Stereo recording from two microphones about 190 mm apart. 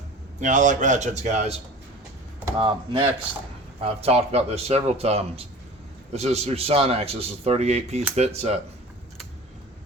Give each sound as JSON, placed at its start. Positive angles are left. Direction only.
{"t": 0.3, "sound": "a man's voice", "side_deg": -40}
{"t": 2.6, "sound": "speech", "side_deg": -25}
{"t": 4.0, "sound": "a man's voice", "side_deg": -35}